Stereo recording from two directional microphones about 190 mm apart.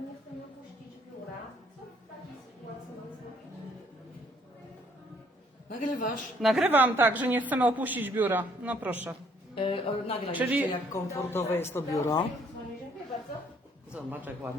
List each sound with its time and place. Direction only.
5.6 s a man's voice: 50° left (ahead or behind)
6.4 s a woman's voice: 5° right (ahead or behind)
9.6 s speech: 30° left (ahead or behind)
10.3 s a woman's voice: 10° right (ahead or behind)
10.7 s speech: 15° left (ahead or behind)
13.9 s a man's voice: 10° right (ahead or behind)